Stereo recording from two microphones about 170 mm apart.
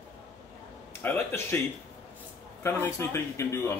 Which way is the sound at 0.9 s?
15° left (ahead or behind).